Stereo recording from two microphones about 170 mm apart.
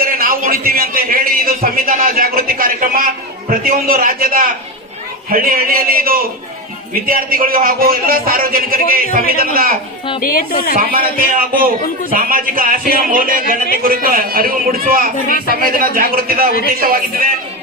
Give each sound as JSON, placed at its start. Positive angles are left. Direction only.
{"t": 0.0, "sound": "a man's voice", "side_deg": -60}
{"t": 10.2, "sound": "speech", "side_deg": 55}
{"t": 10.8, "sound": "a man's voice", "side_deg": -55}